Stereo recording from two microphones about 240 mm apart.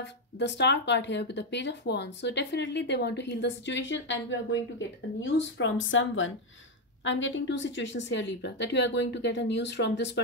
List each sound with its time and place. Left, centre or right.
0.0 s speech: left